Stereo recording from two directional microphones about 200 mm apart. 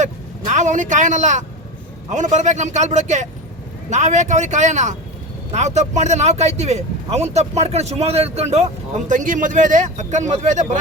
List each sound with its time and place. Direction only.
0.0 s a man's voice: 35° right (ahead or behind)